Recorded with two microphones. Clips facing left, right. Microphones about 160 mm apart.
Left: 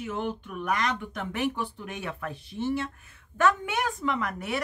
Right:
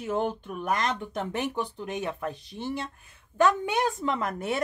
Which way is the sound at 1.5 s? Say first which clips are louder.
Right 3 dB; 20° right (ahead or behind).